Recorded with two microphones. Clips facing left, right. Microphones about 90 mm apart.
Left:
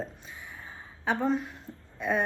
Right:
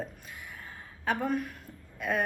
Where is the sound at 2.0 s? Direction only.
25° left (ahead or behind).